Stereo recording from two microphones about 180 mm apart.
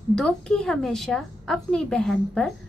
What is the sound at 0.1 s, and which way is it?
A woman's voice, 5° left (ahead or behind).